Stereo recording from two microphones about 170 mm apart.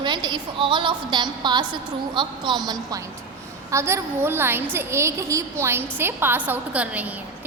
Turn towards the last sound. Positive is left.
turn(degrees=-10)  # may be behind; listen again after turning